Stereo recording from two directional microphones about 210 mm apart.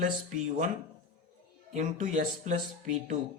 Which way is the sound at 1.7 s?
35° right (ahead or behind).